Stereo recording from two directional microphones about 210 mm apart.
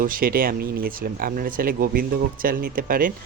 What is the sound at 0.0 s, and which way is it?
Speech, 40° right (ahead or behind).